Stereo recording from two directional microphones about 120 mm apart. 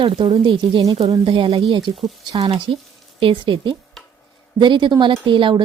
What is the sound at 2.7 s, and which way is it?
A woman's voice, 50° right (ahead or behind).